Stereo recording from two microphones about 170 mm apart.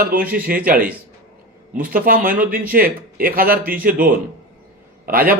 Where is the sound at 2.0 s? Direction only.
55° right (ahead or behind).